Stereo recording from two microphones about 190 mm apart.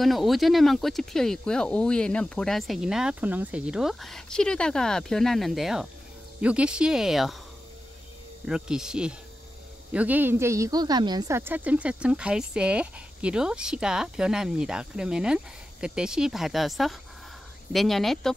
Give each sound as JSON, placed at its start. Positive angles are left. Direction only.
{"t": 0.0, "sound": "speech", "side_deg": 0}
{"t": 8.5, "sound": "speech", "side_deg": -5}